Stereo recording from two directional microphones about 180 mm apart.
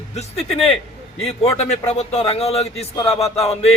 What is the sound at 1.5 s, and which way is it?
A man's voice, 35° left (ahead or behind).